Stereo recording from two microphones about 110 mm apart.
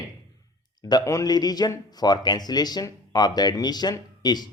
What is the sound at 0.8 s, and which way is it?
Speech, 40° left (ahead or behind).